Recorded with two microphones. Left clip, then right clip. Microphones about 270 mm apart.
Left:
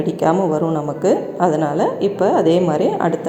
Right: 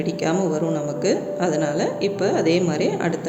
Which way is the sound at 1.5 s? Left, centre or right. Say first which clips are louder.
Left 5 dB; centre.